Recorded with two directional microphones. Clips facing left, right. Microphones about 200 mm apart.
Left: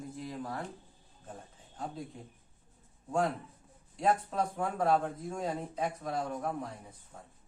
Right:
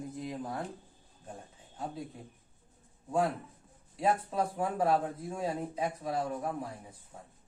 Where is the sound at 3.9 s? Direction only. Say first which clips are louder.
Even; 5° right (ahead or behind).